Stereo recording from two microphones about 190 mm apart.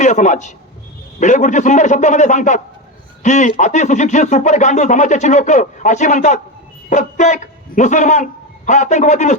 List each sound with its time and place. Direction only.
0.0 s a man's voice: 40° left (ahead or behind)